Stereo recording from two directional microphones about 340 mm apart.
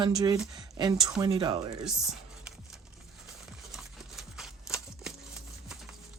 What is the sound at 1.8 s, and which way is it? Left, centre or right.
Speech, centre.